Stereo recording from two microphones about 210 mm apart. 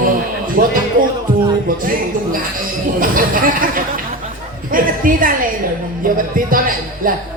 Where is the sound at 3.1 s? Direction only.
40° right (ahead or behind).